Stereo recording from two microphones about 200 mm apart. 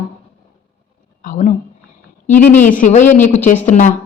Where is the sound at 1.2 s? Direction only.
40° left (ahead or behind).